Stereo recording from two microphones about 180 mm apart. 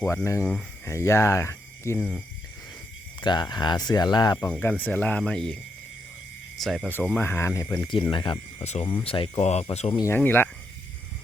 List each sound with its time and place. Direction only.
0.0 s speech: 15° left (ahead or behind)
3.2 s speech: 25° left (ahead or behind)
4.5 s speech: 10° left (ahead or behind)
6.6 s speech: centre (ahead or behind); by 10.0 s 30° left (ahead or behind)
10.0 s speech: 10° left (ahead or behind)